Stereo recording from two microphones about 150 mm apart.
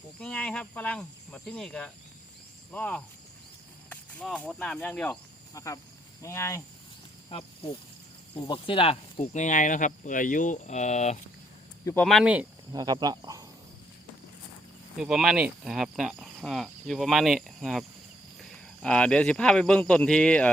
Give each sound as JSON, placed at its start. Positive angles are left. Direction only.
{"t": 0.2, "sound": "speech", "side_deg": 5}
{"t": 5.5, "sound": "speech", "side_deg": 20}
{"t": 7.3, "sound": "speech", "side_deg": 35}
{"t": 12.0, "sound": "speech", "side_deg": 0}
{"t": 12.7, "sound": "speech", "side_deg": -25}
{"t": 14.9, "sound": "speech", "side_deg": -5}